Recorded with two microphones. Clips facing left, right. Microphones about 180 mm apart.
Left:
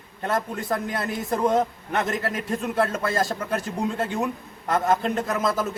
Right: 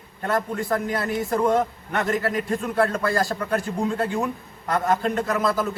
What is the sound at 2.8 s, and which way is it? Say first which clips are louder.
A man's voice: right 2 dB; 20° left (ahead or behind).